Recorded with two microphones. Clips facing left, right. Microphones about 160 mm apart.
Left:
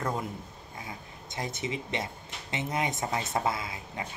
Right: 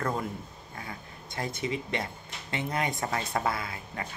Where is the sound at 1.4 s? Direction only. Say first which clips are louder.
Right 2 dB; 20° left (ahead or behind).